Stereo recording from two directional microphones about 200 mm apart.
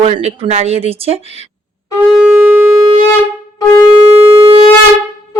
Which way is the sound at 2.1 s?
5° right (ahead or behind).